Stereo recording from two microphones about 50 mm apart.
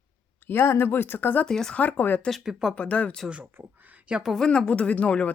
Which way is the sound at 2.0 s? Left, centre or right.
Left.